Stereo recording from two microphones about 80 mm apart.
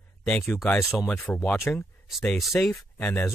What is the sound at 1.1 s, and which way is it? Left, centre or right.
Speech, left.